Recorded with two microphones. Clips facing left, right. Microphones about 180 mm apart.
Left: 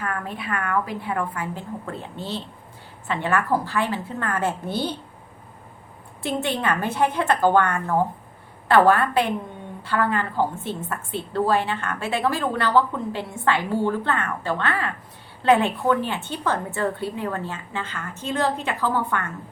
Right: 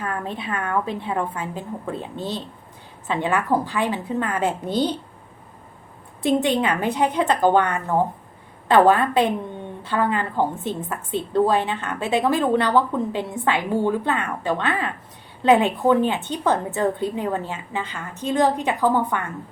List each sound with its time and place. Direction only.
0.0 s a woman's voice: 25° right (ahead or behind)
6.2 s a woman's voice: 15° right (ahead or behind)